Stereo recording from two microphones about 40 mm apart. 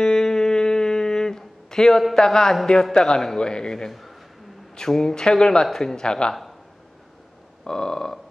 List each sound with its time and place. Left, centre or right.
0.0 s a sound: centre
2.1 s speech: centre
7.6 s speech: centre